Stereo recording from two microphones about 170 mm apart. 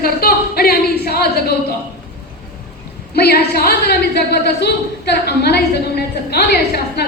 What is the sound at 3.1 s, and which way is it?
A woman's voice, 70° left (ahead or behind).